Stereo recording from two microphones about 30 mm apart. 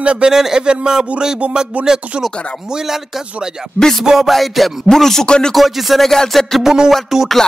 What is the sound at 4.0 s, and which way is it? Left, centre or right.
Speech, centre.